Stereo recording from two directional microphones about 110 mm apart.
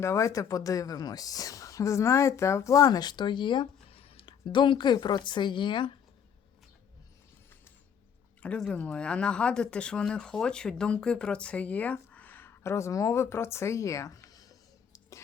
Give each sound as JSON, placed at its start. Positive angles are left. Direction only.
{"t": 0.0, "sound": "speech", "side_deg": 25}
{"t": 8.4, "sound": "speech", "side_deg": 10}